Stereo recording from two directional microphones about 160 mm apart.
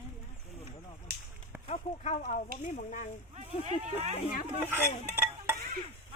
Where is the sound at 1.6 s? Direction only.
45° left (ahead or behind).